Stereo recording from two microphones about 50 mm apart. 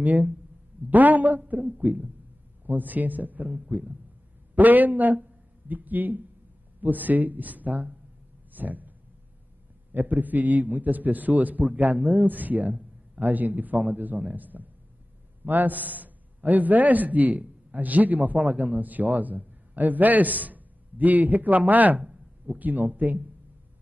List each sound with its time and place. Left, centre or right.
0.0 s a man's voice: right
4.6 s a man's voice: right
8.5 s a sound: right
9.9 s a man's voice: right
22.0 s a sound: centre
22.6 s a man's voice: right